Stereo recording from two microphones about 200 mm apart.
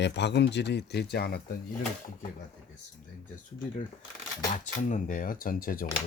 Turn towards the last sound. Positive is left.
turn(degrees=45)  # may be behind; listen again after turning